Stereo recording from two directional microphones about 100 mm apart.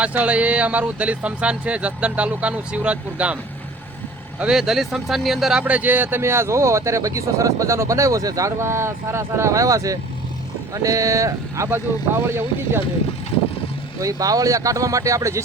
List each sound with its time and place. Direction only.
0.0 s speech: 15° right (ahead or behind)
4.4 s speech: 5° right (ahead or behind); by 12.8 s 25° right (ahead or behind)
14.0 s speech: 35° right (ahead or behind)